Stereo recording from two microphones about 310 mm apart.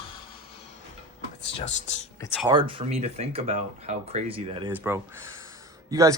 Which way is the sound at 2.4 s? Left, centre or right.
Centre.